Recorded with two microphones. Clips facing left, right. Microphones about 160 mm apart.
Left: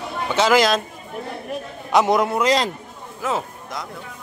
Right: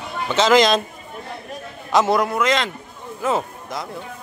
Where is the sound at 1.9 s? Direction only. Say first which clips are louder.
Even; 15° left (ahead or behind); by 2.7 s 35° left (ahead or behind).